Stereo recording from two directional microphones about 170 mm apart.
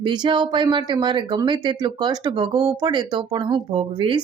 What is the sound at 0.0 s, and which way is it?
Speech, 25° right (ahead or behind).